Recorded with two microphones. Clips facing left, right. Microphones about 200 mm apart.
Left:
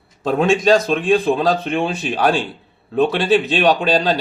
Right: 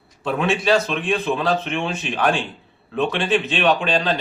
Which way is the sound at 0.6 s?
40° left (ahead or behind).